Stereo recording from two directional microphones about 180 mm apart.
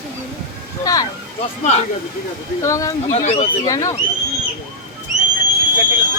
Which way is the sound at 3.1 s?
35° left (ahead or behind).